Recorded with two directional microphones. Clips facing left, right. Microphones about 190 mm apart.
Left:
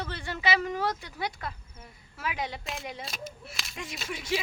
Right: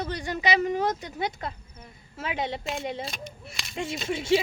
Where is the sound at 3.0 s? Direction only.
Centre (ahead or behind).